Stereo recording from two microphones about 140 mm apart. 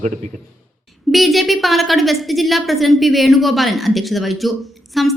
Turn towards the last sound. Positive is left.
turn(degrees=0)  # may be behind; listen again after turning